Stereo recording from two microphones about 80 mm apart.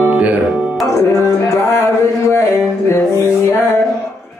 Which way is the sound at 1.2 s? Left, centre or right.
Left.